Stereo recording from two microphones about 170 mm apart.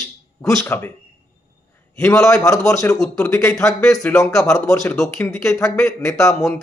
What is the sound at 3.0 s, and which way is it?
Speech, 5° left (ahead or behind).